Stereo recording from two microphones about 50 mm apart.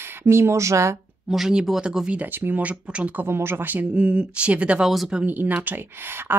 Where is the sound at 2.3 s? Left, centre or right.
Right.